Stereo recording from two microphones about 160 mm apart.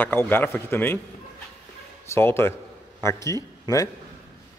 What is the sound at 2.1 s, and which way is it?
A man's voice, 15° left (ahead or behind).